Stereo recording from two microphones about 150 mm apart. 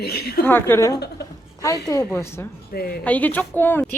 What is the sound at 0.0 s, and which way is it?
Speech, 90° left.